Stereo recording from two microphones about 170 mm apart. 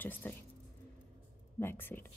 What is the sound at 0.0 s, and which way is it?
Speech, 10° left (ahead or behind).